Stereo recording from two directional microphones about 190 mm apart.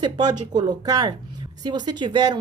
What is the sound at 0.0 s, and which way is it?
A woman's voice, 20° right (ahead or behind).